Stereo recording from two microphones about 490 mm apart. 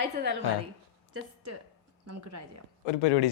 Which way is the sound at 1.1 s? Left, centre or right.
Right.